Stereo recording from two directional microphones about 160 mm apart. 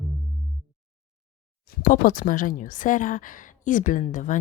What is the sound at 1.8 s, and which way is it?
A woman's voice, 60° left (ahead or behind).